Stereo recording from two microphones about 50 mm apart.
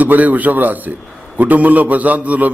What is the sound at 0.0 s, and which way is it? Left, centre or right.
A man's voice, right.